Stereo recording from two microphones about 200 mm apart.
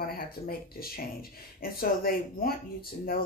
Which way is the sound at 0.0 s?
50° left (ahead or behind).